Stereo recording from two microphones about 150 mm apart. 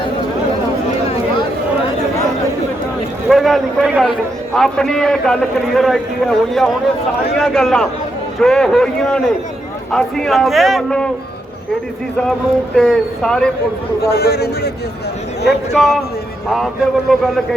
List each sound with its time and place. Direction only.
3.2 s a man's voice: centre (ahead or behind)
12.3 s a man's voice: centre (ahead or behind)
14.1 s a man's voice: 90° left
15.4 s a man's voice: centre (ahead or behind)
17.1 s a man's voice: centre (ahead or behind)